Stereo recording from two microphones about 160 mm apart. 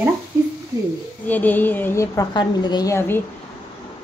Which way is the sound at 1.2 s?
10° left (ahead or behind).